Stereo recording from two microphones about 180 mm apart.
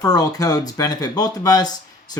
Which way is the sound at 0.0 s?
20° left (ahead or behind).